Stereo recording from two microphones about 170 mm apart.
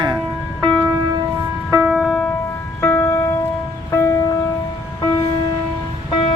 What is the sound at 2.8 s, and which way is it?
Music, 15° left (ahead or behind).